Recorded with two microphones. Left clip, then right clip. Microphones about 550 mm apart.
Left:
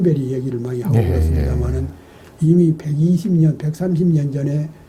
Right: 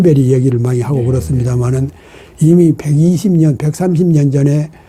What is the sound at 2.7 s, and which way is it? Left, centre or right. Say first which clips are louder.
Speech: right 6 dB; right.